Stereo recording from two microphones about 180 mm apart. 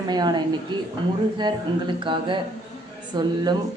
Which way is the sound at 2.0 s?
25° right (ahead or behind).